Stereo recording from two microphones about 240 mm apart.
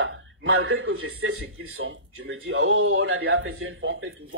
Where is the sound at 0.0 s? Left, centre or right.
Right.